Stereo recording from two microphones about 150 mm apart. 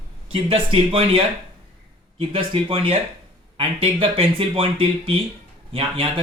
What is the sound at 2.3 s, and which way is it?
Speech, 35° right (ahead or behind).